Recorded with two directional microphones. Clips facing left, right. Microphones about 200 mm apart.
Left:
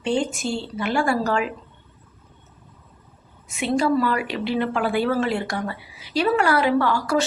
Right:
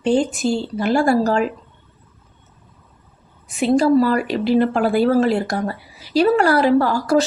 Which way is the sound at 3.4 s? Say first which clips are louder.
Right 6 dB; 35° right (ahead or behind).